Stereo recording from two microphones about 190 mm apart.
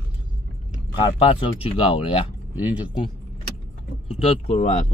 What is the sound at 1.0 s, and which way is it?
Speech, 30° left (ahead or behind).